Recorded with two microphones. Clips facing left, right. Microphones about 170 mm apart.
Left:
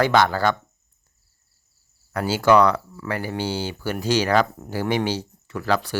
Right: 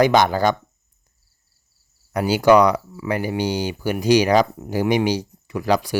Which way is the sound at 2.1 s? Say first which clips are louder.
Right 3 dB; 15° right (ahead or behind).